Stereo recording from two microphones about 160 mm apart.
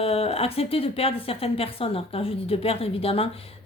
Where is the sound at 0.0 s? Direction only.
40° left (ahead or behind).